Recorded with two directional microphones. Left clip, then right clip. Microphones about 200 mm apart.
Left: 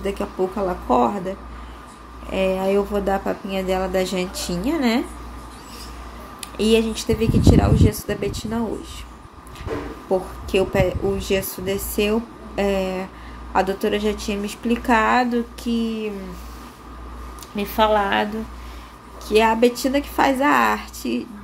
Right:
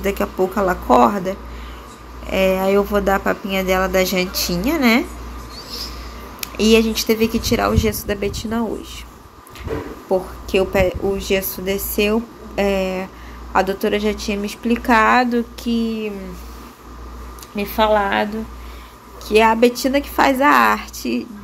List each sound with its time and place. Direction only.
0.0 s speech: 5° left (ahead or behind)
6.4 s speech: 10° left (ahead or behind)
10.1 s speech: 10° left (ahead or behind)
17.6 s speech: 20° left (ahead or behind)